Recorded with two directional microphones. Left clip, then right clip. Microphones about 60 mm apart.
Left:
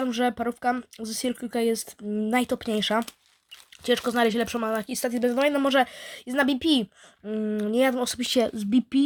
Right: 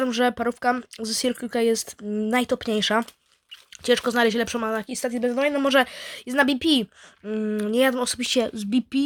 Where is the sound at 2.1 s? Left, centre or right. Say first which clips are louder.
Right 2 dB; right.